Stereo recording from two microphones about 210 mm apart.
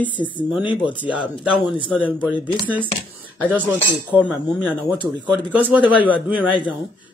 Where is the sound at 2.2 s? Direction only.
25° left (ahead or behind).